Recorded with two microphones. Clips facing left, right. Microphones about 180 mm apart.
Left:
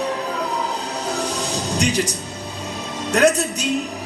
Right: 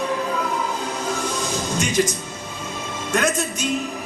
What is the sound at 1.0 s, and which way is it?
Music, 35° left (ahead or behind).